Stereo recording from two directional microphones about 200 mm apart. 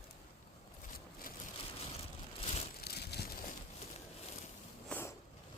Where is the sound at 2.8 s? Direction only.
55° left (ahead or behind).